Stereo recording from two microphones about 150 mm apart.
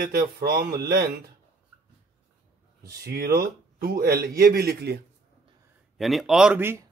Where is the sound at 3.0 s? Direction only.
90° right.